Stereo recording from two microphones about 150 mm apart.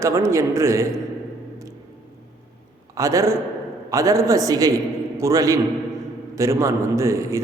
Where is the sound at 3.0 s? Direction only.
20° right (ahead or behind).